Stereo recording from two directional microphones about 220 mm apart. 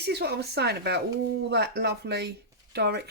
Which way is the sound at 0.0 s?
50° right (ahead or behind).